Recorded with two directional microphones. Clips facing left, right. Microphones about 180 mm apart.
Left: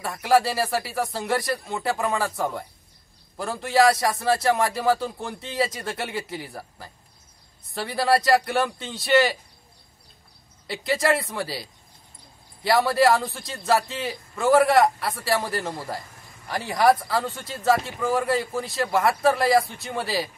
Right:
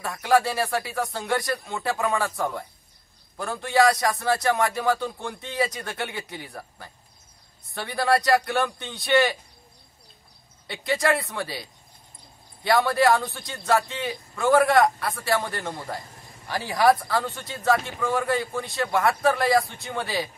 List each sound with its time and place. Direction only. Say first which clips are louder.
0.0 s a man's voice: left 1 dB; centre (ahead or behind)
10.7 s a man's voice: left 1 dB; centre (ahead or behind)